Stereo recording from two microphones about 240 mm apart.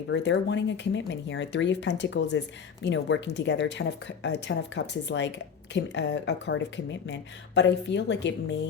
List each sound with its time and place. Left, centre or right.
0.1 s speech: left